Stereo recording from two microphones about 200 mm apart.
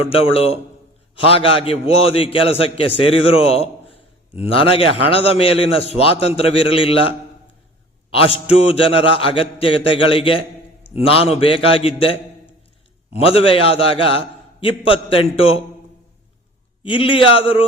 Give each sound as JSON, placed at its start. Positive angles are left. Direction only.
{"t": 0.1, "sound": "a man's voice", "side_deg": 30}
{"t": 8.1, "sound": "a man's voice", "side_deg": 30}
{"t": 13.1, "sound": "a man's voice", "side_deg": 30}
{"t": 16.8, "sound": "a man's voice", "side_deg": 25}